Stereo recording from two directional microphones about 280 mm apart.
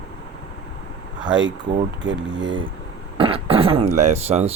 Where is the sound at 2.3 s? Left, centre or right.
Centre.